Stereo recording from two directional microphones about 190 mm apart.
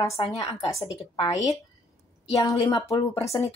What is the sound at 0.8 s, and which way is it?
Speech, 30° left (ahead or behind).